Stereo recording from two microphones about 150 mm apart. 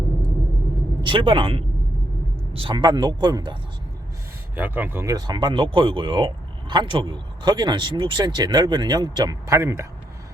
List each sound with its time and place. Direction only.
1.0 s a man's voice: 35° right (ahead or behind)
4.5 s speech: 10° right (ahead or behind)